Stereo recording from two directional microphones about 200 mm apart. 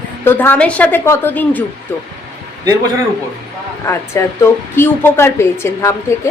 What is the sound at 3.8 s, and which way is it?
A woman's voice, 15° left (ahead or behind).